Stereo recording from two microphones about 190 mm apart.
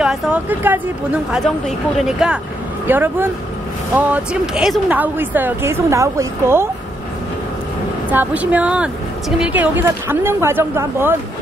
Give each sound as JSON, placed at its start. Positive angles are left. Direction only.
{"t": 0.0, "sound": "speech", "side_deg": -5}
{"t": 2.0, "sound": "a woman's voice", "side_deg": -5}
{"t": 8.1, "sound": "a woman's voice", "side_deg": -10}